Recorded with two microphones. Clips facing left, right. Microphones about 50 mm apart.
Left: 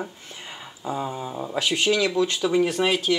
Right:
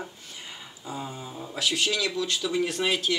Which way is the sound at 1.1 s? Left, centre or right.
Left.